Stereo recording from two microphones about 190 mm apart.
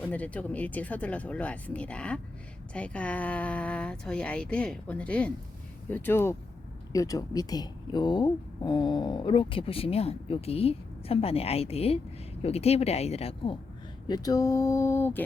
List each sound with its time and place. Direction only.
0.0 s speech: 10° left (ahead or behind)